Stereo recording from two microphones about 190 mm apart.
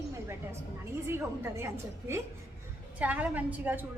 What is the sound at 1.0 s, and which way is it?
A woman's voice, 15° right (ahead or behind).